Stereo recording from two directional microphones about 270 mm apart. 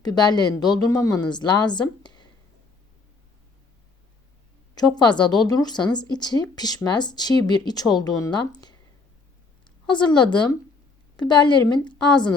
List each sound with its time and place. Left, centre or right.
0.0 s speech: centre
2.0 s a sound: centre
5.0 s speech: centre
9.9 s speech: centre